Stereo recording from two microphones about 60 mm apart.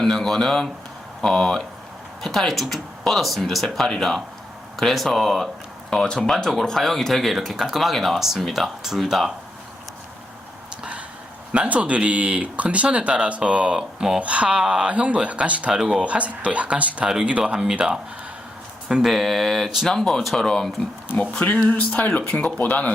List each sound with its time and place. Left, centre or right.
0.0 s speech: centre
5.9 s speech: centre
11.5 s speech: right
14.2 s speech: right
15.7 s speech: centre
16.0 s speech: right
19.0 s speech: centre
21.3 s speech: left